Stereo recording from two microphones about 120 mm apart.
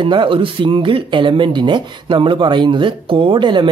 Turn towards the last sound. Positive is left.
turn(degrees=-40)  # may be behind; listen again after turning